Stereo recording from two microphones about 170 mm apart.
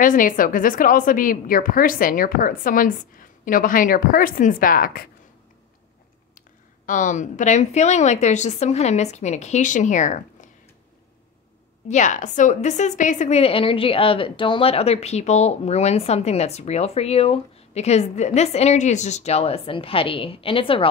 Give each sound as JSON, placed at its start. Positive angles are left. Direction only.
{"t": 0.0, "sound": "a woman's voice", "side_deg": 50}
{"t": 6.9, "sound": "a woman's voice", "side_deg": 50}
{"t": 11.9, "sound": "a woman's voice", "side_deg": 45}